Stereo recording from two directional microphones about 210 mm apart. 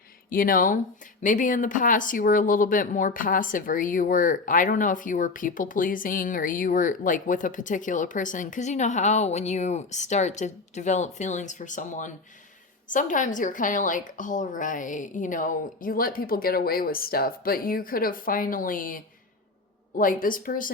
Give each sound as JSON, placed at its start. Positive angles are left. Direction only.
{"t": 0.3, "sound": "speech", "side_deg": 40}